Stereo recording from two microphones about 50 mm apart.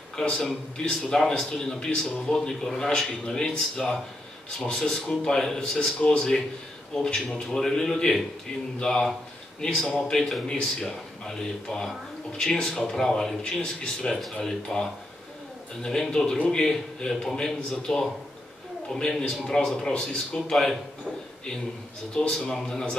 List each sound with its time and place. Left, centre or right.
0.1 s a man's voice: centre
22.2 s a man's voice: centre